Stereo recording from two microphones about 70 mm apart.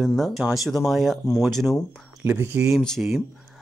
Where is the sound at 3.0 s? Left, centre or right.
Centre.